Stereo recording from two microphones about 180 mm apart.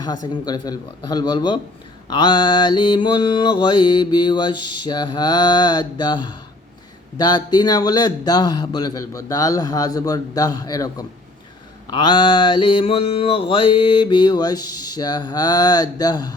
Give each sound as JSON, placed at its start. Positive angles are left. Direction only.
{"t": 0.0, "sound": "mantra", "side_deg": 20}